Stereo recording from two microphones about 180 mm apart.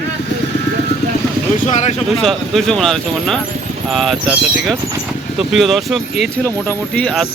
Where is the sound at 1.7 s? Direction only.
40° left (ahead or behind).